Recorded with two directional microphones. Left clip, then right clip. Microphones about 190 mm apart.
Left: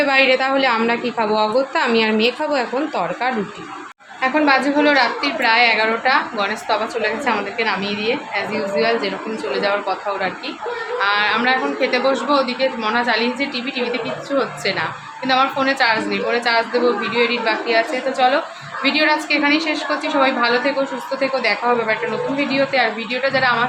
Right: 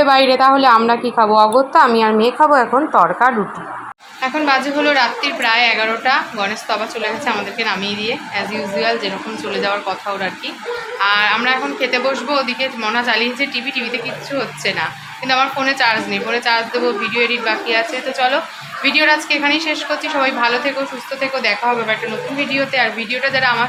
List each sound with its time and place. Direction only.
0.0 s a woman's voice: 25° right (ahead or behind)
4.2 s a woman's voice: 5° left (ahead or behind)